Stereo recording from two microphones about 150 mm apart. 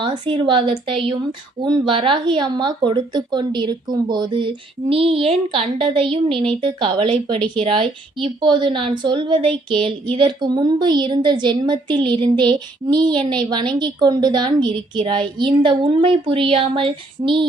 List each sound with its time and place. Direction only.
0.0 s speech: 35° right (ahead or behind)